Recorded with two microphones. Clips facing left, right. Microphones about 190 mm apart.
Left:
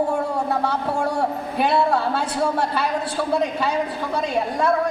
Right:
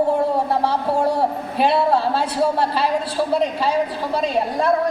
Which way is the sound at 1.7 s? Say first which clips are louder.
Right 2 dB; 30° right (ahead or behind).